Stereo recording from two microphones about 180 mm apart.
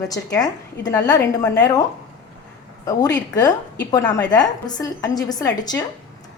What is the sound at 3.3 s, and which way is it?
A woman's voice, 20° left (ahead or behind).